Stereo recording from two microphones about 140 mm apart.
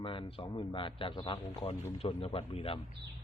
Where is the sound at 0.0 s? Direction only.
35° left (ahead or behind).